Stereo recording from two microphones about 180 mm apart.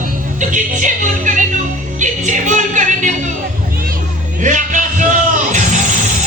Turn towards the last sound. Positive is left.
turn(degrees=-45)  # may be behind; listen again after turning